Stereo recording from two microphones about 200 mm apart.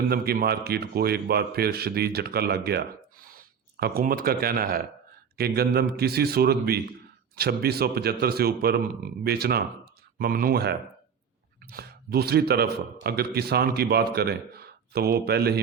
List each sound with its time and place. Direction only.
0.1 s a man's voice: 50° right (ahead or behind)